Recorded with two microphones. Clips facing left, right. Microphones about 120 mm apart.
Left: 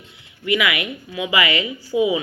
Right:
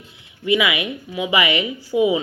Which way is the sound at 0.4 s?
20° right (ahead or behind).